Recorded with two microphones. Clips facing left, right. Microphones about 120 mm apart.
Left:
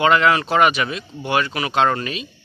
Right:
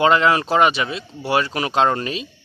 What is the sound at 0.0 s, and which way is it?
A man's voice, 30° right (ahead or behind).